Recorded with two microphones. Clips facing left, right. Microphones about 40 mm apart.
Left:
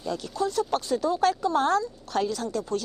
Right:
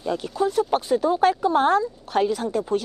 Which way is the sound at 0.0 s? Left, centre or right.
Right.